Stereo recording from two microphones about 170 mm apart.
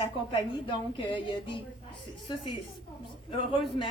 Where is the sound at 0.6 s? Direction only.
30° left (ahead or behind).